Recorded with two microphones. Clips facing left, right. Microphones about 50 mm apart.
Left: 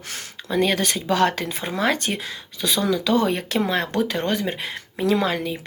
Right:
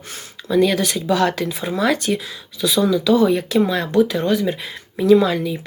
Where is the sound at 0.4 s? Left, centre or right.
Left.